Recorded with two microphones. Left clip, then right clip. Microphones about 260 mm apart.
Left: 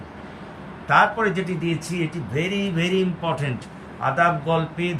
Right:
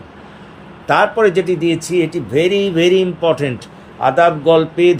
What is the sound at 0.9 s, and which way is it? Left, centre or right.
Speech, right.